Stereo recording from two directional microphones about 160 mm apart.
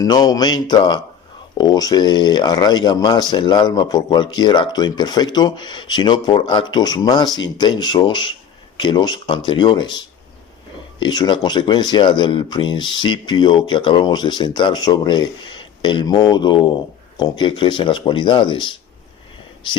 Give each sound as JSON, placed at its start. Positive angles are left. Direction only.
{"t": 0.0, "sound": "speech", "side_deg": 25}
{"t": 11.0, "sound": "speech", "side_deg": 25}